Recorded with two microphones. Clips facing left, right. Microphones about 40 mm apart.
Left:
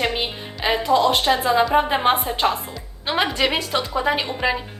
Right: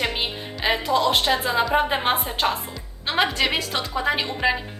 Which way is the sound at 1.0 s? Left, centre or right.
Left.